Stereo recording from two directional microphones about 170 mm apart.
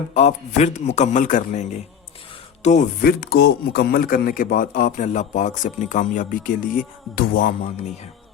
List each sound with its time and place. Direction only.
0.1 s speech: 40° left (ahead or behind)
3.0 s speech: 65° left (ahead or behind); by 7.9 s 50° left (ahead or behind)